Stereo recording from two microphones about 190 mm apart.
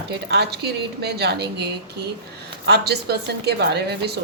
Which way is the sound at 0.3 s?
60° right (ahead or behind).